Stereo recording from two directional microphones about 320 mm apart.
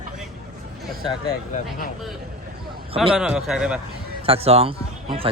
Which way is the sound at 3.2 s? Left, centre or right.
Centre.